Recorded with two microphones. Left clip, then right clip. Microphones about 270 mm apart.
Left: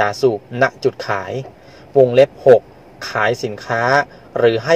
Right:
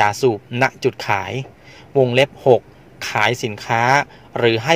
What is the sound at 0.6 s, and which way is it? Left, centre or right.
A man's voice, right.